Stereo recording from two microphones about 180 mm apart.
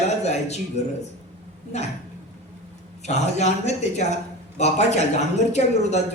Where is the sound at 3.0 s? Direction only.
40° left (ahead or behind).